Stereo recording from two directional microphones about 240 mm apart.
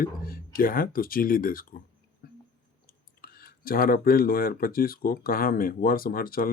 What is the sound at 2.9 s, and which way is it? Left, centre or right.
Speech, left.